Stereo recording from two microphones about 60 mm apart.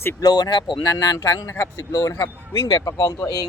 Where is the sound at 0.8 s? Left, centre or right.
Left.